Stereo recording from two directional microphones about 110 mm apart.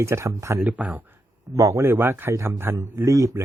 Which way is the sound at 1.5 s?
30° right (ahead or behind).